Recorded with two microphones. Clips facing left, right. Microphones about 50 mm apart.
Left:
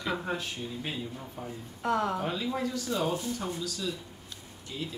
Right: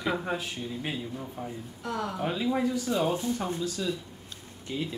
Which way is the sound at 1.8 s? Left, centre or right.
Left.